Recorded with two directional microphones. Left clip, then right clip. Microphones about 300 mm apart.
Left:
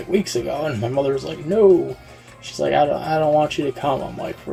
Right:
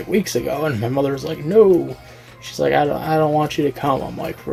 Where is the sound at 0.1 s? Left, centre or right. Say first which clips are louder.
Right 1 dB; right.